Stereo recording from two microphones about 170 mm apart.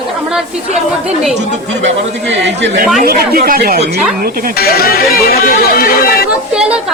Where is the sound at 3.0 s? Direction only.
60° right (ahead or behind).